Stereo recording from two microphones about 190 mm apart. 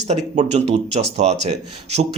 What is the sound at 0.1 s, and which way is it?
Speech, 35° right (ahead or behind).